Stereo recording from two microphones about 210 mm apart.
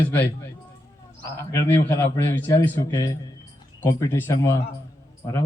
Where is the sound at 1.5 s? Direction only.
10° left (ahead or behind).